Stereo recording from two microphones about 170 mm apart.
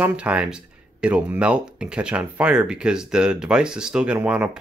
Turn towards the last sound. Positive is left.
turn(degrees=-5)  # may be behind; listen again after turning